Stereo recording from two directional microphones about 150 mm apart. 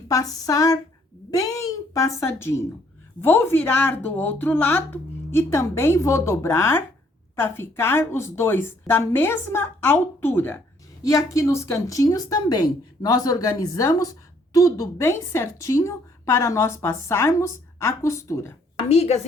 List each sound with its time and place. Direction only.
0.1 s a woman's voice: 25° left (ahead or behind)
18.8 s a woman's voice: 45° left (ahead or behind)